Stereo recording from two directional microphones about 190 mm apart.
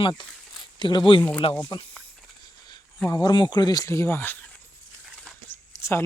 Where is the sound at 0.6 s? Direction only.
25° left (ahead or behind).